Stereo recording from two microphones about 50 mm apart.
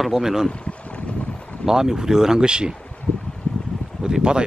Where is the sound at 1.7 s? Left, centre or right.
Centre.